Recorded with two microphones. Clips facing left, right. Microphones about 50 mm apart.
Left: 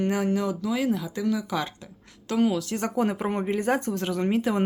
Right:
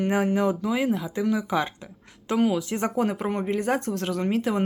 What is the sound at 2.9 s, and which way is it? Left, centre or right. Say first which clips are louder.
Speech: left 2 dB; centre.